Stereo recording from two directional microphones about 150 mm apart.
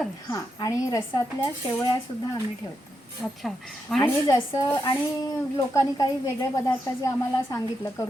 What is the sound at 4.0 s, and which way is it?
A woman's voice, 15° left (ahead or behind).